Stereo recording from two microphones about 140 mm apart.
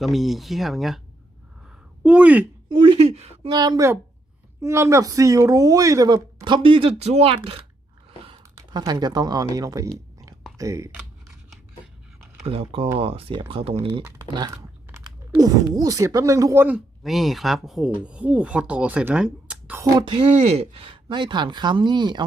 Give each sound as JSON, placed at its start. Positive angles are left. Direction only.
{"t": 0.0, "sound": "speech", "side_deg": 0}
{"t": 2.0, "sound": "speech", "side_deg": -10}
{"t": 2.6, "sound": "speech", "side_deg": -40}
{"t": 3.5, "sound": "speech", "side_deg": -30}
{"t": 8.5, "sound": "speech", "side_deg": -30}
{"t": 12.5, "sound": "speech", "side_deg": -40}
{"t": 14.3, "sound": "speech", "side_deg": -30}
{"t": 16.6, "sound": "speech", "side_deg": -5}
{"t": 19.8, "sound": "speech", "side_deg": -35}